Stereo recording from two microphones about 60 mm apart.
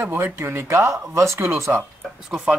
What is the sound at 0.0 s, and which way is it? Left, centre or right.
Speech, right.